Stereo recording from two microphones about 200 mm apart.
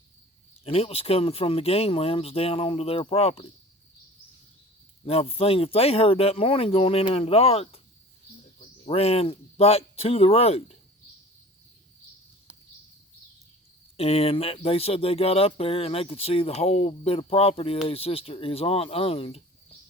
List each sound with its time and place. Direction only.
0.6 s speech: 30° left (ahead or behind)
5.0 s speech: 30° left (ahead or behind)
13.9 s speech: 30° left (ahead or behind)